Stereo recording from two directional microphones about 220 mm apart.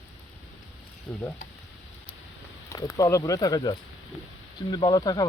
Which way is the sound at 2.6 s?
15° left (ahead or behind).